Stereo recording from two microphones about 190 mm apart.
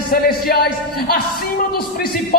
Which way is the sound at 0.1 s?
50° left (ahead or behind).